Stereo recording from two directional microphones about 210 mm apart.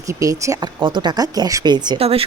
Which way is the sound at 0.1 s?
15° right (ahead or behind).